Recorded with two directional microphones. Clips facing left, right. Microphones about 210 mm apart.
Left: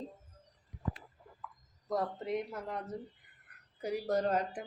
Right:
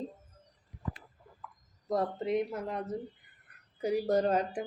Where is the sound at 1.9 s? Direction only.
25° right (ahead or behind).